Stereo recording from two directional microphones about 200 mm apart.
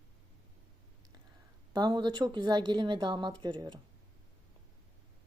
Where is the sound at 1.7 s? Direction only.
20° right (ahead or behind).